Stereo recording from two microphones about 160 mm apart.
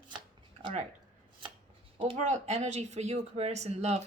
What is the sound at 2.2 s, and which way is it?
Speech, 45° right (ahead or behind).